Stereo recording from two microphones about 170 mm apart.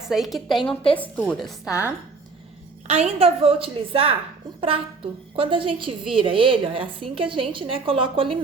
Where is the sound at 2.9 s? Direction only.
35° right (ahead or behind).